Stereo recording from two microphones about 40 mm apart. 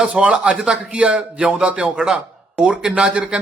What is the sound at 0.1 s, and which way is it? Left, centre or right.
A man's voice, right.